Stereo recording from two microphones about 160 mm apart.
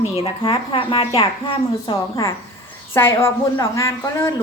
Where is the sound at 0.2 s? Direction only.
35° left (ahead or behind).